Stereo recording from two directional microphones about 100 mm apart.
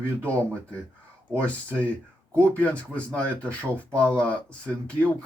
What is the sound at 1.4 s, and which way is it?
Speech, 15° left (ahead or behind).